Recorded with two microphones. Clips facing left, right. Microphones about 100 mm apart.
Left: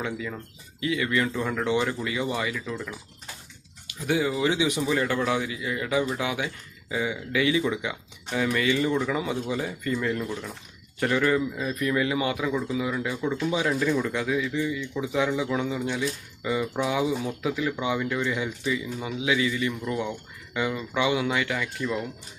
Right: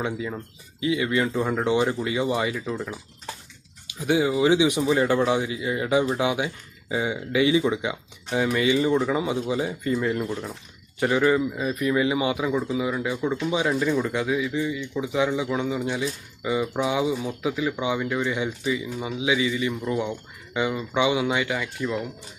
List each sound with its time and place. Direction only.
0.0 s speech: 20° right (ahead or behind)
4.0 s speech: 15° right (ahead or behind)